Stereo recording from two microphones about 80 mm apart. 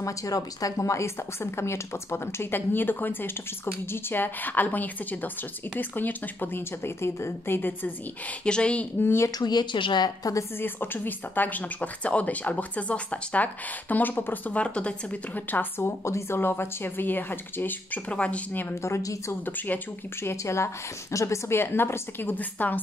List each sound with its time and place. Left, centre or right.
0.0 s a woman's voice: left
8.5 s a woman's voice: centre
9.0 s a woman's voice: left
9.4 s a woman's voice: left
10.6 s speech: left
15.8 s speech: left
18.8 s a woman's voice: left
19.4 s a woman's voice: left